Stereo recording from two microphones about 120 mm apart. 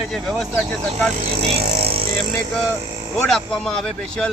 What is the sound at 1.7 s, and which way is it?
Vehicle, 55° right (ahead or behind).